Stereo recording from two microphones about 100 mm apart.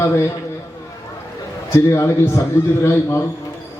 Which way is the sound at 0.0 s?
30° left (ahead or behind).